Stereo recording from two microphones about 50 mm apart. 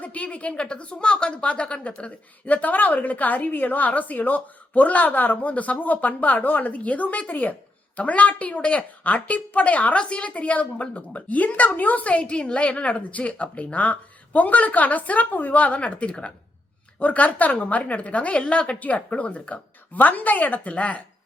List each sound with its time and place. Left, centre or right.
0.0 s a woman's voice: left